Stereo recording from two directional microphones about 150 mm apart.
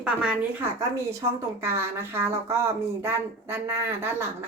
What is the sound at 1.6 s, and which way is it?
A woman's voice, 15° right (ahead or behind).